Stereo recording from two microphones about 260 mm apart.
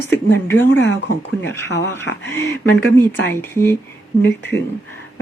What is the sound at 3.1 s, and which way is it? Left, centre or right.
Speech, centre.